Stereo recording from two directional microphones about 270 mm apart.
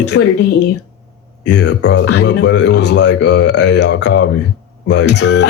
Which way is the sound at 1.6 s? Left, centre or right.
Left.